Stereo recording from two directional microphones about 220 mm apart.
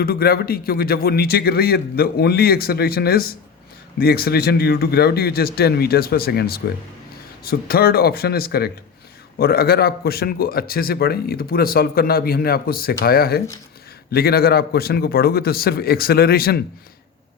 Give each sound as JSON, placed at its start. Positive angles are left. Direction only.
{"t": 0.0, "sound": "a man's voice", "side_deg": 45}